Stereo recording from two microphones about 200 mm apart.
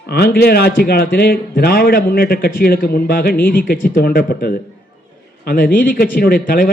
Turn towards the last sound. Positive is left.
turn(degrees=45)  # may be behind; listen again after turning